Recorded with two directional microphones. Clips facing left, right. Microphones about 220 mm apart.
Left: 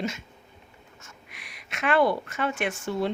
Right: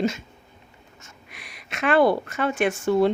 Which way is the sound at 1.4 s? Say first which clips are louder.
Right 4 dB; 35° right (ahead or behind).